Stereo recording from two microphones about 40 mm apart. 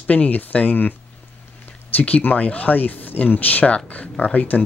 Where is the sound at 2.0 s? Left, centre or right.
Left.